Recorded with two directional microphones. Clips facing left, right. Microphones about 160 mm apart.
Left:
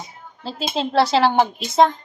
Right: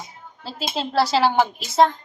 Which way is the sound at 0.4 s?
5° right (ahead or behind).